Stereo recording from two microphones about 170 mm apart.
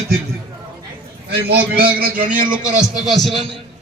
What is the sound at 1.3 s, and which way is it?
A man's voice, 65° right (ahead or behind).